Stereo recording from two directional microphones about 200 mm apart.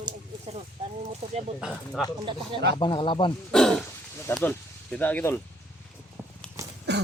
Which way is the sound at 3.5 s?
5° left (ahead or behind).